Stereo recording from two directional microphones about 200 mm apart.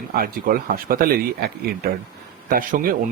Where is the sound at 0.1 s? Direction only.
45° right (ahead or behind).